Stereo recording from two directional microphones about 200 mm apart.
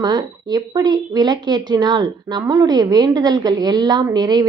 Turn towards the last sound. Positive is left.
turn(degrees=-20)  # may be behind; listen again after turning